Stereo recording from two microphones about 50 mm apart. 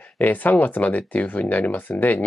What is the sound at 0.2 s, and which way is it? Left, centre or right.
Speech, left.